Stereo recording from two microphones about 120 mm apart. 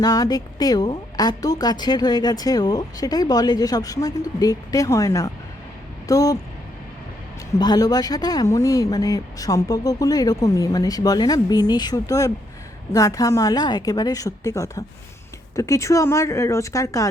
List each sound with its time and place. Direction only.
0.0 s a woman's voice: 30° left (ahead or behind)
7.6 s a woman's voice: 35° left (ahead or behind)